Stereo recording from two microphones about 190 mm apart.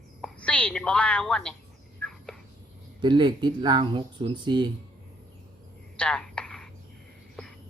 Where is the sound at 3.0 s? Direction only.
25° right (ahead or behind).